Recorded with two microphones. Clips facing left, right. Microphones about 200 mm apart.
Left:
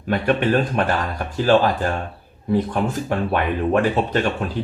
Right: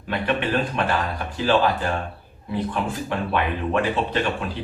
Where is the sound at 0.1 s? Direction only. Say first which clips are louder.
Left 5 dB; 45° left (ahead or behind).